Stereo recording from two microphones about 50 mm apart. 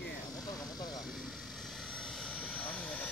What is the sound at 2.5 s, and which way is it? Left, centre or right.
Vehicle, left.